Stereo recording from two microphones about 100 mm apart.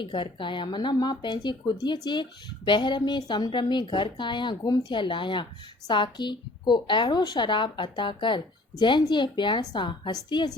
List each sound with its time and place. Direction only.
0.0 s a woman's voice: 55° left (ahead or behind)